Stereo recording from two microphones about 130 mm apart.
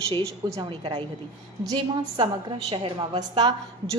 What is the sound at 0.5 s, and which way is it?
A woman's voice, 35° right (ahead or behind).